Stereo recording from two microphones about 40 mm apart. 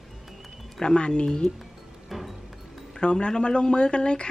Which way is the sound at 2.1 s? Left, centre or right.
Centre.